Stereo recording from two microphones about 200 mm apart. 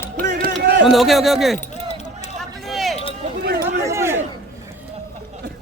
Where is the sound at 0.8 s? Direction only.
Centre (ahead or behind).